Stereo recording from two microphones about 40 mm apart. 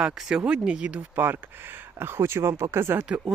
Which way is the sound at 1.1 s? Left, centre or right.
Right.